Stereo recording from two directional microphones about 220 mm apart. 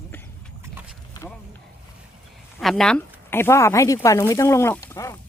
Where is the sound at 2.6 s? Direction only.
Centre (ahead or behind).